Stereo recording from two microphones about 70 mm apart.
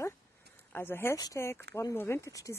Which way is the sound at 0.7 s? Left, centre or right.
Left.